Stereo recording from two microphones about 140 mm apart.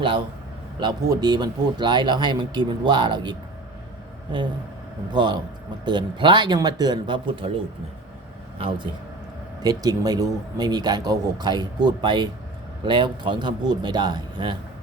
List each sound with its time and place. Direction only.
0.8 s speech: 30° right (ahead or behind)
5.1 s speech: 30° right (ahead or behind)
8.5 s speech: 40° right (ahead or behind)
9.6 s speech: 25° right (ahead or behind)